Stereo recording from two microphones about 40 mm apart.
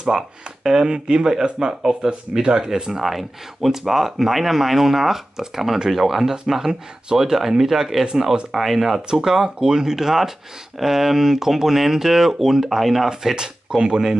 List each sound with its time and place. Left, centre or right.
0.1 s speech: centre
0.7 s speech: right
3.0 s speech: centre
13.1 s speech: centre